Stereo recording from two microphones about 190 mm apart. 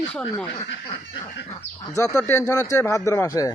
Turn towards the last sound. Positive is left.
turn(degrees=15)  # may be behind; listen again after turning